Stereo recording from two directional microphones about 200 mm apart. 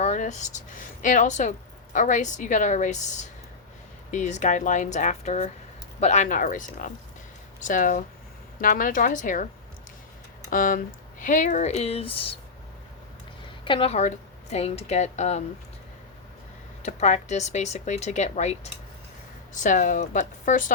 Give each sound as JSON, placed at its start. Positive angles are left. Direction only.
{"t": 0.0, "sound": "a woman's voice", "side_deg": 35}
{"t": 10.5, "sound": "a woman's voice", "side_deg": 45}
{"t": 13.7, "sound": "speech", "side_deg": 30}
{"t": 16.8, "sound": "speech", "side_deg": 35}